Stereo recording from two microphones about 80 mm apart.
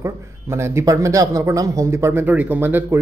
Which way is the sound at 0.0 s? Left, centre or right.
Right.